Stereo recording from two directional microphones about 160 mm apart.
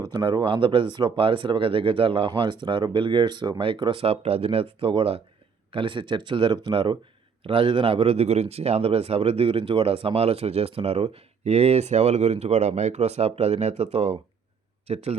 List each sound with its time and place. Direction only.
0.1 s speech: 30° right (ahead or behind)